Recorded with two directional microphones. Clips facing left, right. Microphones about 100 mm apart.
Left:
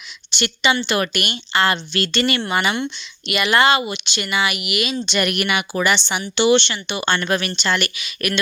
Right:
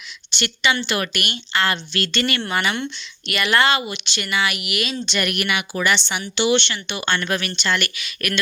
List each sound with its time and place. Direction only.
0.3 s a woman's voice: 20° left (ahead or behind)
2.7 s speech: 10° left (ahead or behind)
5.1 s a woman's voice: 25° left (ahead or behind)
6.3 s speech: 35° left (ahead or behind)
6.7 s a woman's voice: 20° left (ahead or behind)